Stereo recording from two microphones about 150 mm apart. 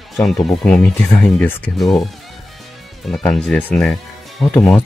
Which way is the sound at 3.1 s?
5° left (ahead or behind).